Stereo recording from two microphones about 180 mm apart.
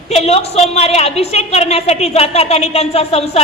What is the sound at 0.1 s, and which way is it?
A man's voice, 35° left (ahead or behind).